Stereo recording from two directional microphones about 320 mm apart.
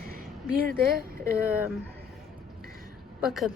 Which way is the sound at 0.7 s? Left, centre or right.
Right.